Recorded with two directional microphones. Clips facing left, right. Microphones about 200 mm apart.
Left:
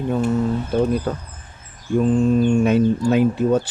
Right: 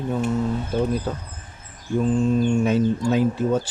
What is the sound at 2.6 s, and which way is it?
Speech, 60° left (ahead or behind).